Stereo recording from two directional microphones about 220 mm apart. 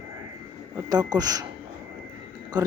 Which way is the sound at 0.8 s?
15° right (ahead or behind).